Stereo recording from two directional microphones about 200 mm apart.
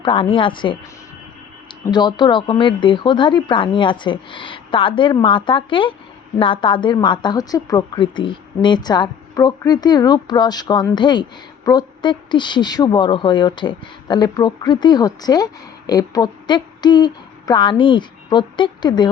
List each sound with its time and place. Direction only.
0.0 s a woman's voice: 25° left (ahead or behind)
1.8 s a woman's voice: 20° left (ahead or behind)